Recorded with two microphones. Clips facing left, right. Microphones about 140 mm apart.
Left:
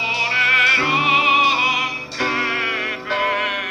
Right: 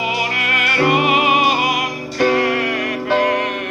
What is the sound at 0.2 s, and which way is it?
Music, 50° right (ahead or behind).